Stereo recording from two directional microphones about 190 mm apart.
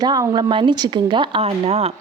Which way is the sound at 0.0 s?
20° right (ahead or behind).